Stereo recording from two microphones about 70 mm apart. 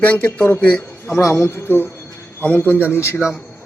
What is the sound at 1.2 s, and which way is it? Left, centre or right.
A man's voice, left.